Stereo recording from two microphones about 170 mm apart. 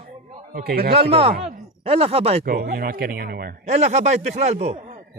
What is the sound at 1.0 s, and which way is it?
A man's voice, 35° right (ahead or behind).